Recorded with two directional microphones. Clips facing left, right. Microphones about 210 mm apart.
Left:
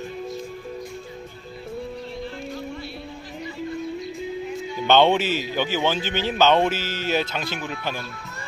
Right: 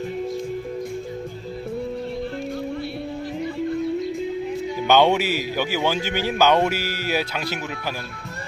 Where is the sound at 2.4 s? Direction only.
55° right (ahead or behind).